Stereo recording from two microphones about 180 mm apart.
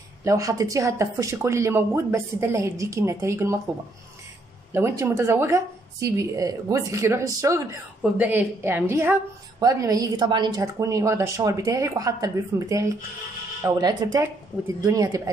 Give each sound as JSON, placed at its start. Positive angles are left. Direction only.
{"t": 0.2, "sound": "a woman's voice", "side_deg": -15}
{"t": 4.7, "sound": "a woman's voice", "side_deg": -15}